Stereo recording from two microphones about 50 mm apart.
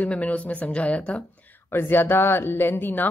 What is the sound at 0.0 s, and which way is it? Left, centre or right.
Speech, left.